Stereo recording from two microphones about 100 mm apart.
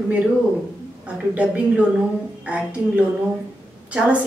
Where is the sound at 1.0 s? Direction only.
10° right (ahead or behind).